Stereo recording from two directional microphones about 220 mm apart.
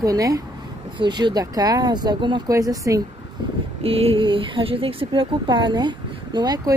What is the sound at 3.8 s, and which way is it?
Speech, 25° right (ahead or behind).